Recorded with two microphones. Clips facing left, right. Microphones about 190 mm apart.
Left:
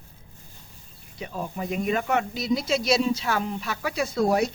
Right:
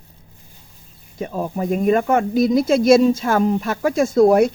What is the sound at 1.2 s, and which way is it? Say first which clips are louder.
Speech: right 8 dB; 45° right (ahead or behind).